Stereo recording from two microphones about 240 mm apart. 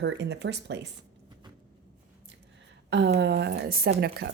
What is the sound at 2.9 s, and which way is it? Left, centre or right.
Speech, right.